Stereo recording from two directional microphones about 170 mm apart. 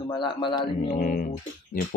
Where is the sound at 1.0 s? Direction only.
55° left (ahead or behind).